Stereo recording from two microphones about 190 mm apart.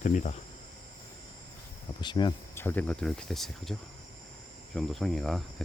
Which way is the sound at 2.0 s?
25° left (ahead or behind).